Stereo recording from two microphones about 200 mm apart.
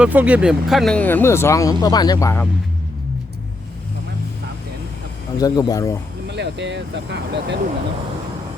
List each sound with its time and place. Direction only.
0.0 s speech: 10° right (ahead or behind); by 2.5 s 15° left (ahead or behind)
5.4 s speech: 20° left (ahead or behind)
6.3 s speech: 60° right (ahead or behind)